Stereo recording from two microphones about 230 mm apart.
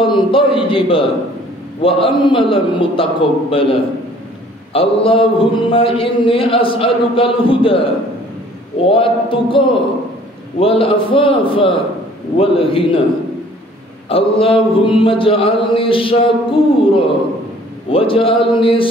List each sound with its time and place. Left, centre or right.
0.0 s a man's voice: left
4.7 s a man's voice: left
8.9 s a man's voice: left
14.0 s a man's voice: left